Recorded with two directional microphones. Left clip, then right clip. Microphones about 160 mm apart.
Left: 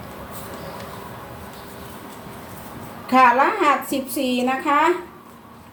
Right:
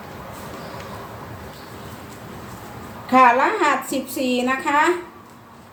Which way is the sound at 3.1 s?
15° right (ahead or behind).